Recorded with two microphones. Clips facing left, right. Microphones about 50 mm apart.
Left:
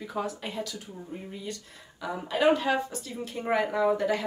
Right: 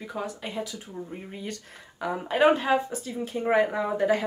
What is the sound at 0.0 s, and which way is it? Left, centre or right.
Speech, centre.